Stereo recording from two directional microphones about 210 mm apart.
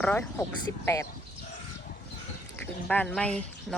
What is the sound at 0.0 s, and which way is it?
Speech, 10° left (ahead or behind).